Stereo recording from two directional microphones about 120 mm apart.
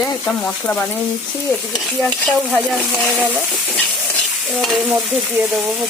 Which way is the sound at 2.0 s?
10° left (ahead or behind).